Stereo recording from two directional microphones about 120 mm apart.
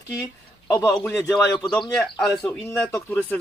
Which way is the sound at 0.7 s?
20° left (ahead or behind).